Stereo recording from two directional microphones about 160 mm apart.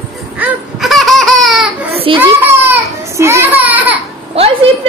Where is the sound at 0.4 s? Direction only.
Centre (ahead or behind).